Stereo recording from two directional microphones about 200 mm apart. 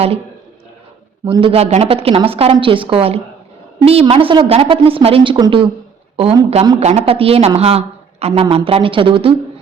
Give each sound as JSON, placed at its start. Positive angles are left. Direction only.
{"t": 1.2, "sound": "a woman's voice", "side_deg": -25}